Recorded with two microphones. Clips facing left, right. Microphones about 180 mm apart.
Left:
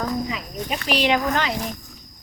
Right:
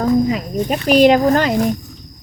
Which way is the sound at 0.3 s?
45° right (ahead or behind).